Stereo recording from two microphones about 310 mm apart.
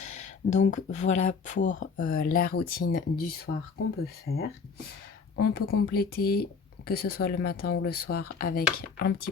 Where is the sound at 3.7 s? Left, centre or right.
Left.